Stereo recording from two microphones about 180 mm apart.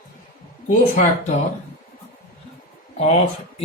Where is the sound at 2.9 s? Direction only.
35° left (ahead or behind).